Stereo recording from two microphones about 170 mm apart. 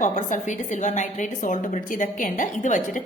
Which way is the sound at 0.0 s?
45° left (ahead or behind).